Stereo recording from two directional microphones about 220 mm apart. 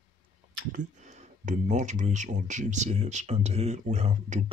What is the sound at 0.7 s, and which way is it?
Speech, 35° right (ahead or behind).